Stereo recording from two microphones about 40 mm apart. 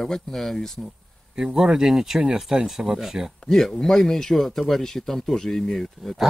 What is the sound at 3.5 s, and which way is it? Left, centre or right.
Speech, centre.